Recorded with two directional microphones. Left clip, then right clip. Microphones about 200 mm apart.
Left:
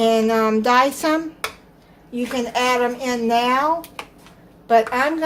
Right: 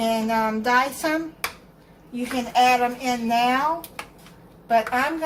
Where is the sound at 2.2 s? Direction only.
45° left (ahead or behind).